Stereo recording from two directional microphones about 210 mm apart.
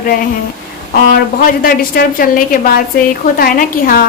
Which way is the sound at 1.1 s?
40° left (ahead or behind).